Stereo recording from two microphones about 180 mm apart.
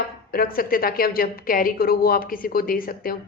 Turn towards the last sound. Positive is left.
turn(degrees=55)  # may be behind; listen again after turning